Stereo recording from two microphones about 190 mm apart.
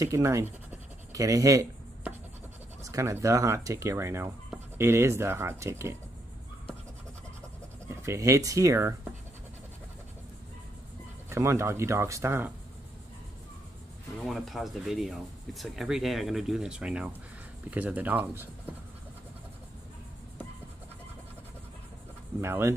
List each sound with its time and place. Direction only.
0.0 s pant: 15° right (ahead or behind)
2.8 s speech: 15° right (ahead or behind)
7.9 s speech: 15° right (ahead or behind)
11.2 s speech: 15° right (ahead or behind)
14.2 s speech: centre (ahead or behind)
22.4 s speech: 15° right (ahead or behind)